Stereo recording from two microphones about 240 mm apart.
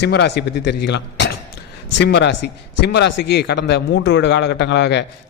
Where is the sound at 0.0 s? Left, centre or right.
Left.